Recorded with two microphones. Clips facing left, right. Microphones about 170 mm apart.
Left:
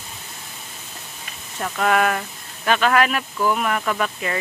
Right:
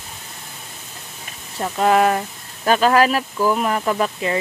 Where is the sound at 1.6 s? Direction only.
25° right (ahead or behind).